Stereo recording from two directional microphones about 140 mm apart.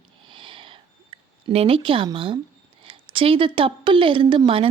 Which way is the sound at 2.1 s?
40° right (ahead or behind).